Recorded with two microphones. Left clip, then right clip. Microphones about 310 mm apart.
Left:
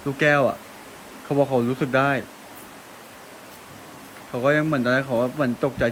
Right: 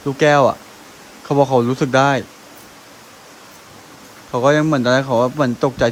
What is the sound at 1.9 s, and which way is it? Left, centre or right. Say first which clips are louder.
Speech: right 6 dB; centre.